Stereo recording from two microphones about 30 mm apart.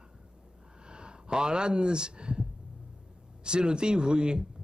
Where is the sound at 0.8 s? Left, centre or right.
Right.